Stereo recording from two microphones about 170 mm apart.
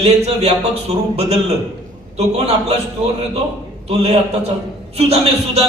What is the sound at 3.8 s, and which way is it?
A man's voice, 35° right (ahead or behind).